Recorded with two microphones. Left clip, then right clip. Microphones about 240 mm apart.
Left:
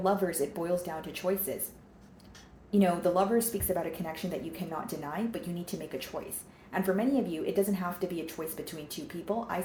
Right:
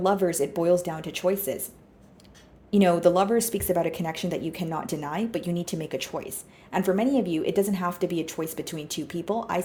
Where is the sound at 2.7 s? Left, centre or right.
Right.